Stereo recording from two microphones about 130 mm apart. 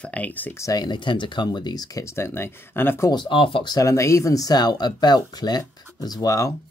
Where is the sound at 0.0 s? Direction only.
10° left (ahead or behind).